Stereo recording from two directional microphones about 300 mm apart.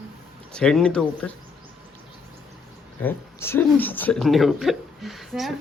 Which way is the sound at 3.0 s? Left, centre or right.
Centre.